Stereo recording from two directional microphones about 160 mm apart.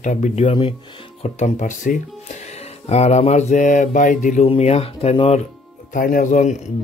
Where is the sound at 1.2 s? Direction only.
50° left (ahead or behind).